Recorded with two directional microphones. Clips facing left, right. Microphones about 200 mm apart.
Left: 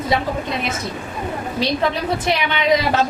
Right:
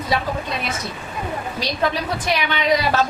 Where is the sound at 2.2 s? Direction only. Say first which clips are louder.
Even; 20° left (ahead or behind).